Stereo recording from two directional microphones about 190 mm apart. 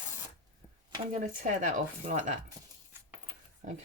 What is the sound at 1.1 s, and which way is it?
Speech, 40° right (ahead or behind).